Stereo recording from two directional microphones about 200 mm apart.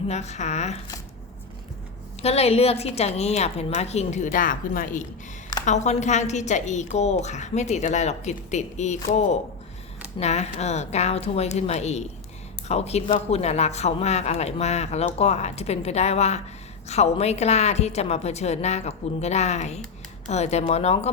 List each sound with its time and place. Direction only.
0.1 s a woman's voice: 35° left (ahead or behind)
2.2 s a woman's voice: 30° left (ahead or behind)